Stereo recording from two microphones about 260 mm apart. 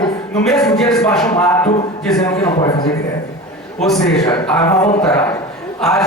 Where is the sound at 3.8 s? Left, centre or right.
Centre.